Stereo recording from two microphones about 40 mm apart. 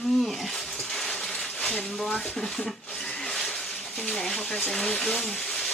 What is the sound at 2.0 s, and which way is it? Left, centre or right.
Speech, centre.